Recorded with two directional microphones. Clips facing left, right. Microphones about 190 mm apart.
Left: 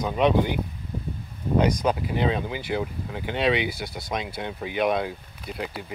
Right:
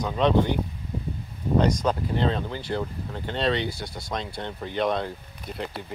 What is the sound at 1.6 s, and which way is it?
Speech, 5° left (ahead or behind).